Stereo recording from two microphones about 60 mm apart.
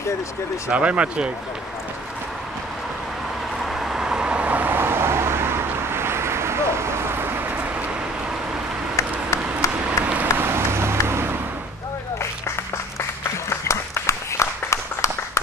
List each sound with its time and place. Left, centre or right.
0.7 s speech: right
3.6 s vehicle: centre; by 4.7 s right
4.7 s vehicle: right
8.9 s a sound: left
9.8 s vehicle: right
10.3 s vehicle: right
13.5 s a sound: left